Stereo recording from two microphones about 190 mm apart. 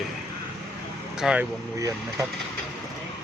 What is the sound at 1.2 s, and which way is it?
Speech, 5° right (ahead or behind).